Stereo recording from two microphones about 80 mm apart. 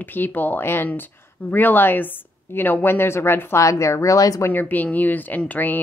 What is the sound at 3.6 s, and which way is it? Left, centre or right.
Speech, left.